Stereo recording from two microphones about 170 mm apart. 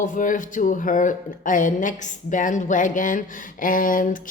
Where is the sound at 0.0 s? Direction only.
50° left (ahead or behind).